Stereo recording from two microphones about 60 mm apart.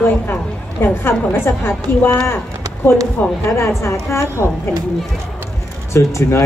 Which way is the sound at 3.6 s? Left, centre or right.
Left.